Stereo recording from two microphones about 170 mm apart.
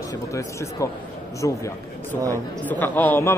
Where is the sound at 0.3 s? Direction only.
20° left (ahead or behind).